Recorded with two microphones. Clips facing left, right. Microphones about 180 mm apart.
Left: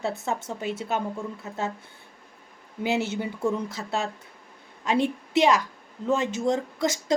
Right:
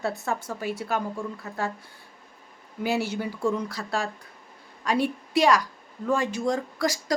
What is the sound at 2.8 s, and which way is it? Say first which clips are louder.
A woman's voice: even; 20° left (ahead or behind).